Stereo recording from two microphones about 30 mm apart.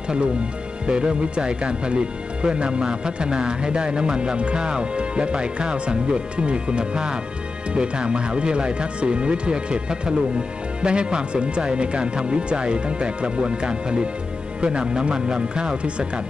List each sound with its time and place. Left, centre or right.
0.8 s speech: right